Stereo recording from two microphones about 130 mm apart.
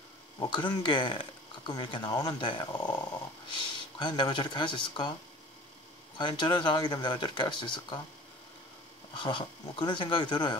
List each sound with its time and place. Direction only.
0.4 s speech: 35° left (ahead or behind)
6.1 s speech: 35° left (ahead or behind)
9.1 s speech: 35° left (ahead or behind)